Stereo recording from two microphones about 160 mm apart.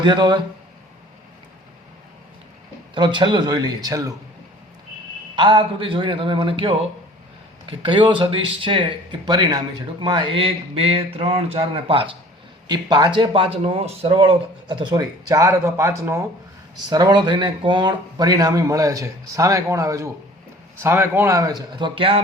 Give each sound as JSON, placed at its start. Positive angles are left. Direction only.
{"t": 0.0, "sound": "speech", "side_deg": -30}
{"t": 2.9, "sound": "speech", "side_deg": -30}
{"t": 5.4, "sound": "speech", "side_deg": -30}